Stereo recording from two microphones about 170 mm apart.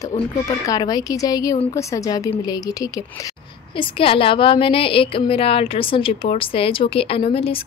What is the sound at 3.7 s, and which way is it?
A woman's voice, 30° left (ahead or behind).